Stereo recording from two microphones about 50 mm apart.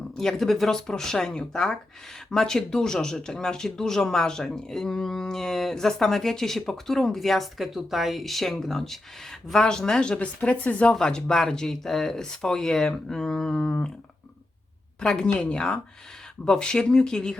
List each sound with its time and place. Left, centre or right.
0.2 s speech: centre; by 10.9 s left
10.9 s speech: centre
15.0 s speech: centre